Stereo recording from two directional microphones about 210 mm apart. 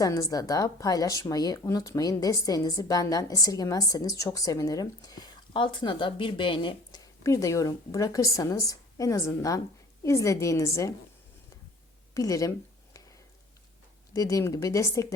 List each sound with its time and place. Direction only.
0.0 s speech: 15° left (ahead or behind)
12.1 s speech: 15° left (ahead or behind)
14.1 s speech: 15° left (ahead or behind)